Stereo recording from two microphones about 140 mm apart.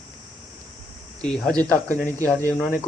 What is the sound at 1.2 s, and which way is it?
Speech, 5° left (ahead or behind).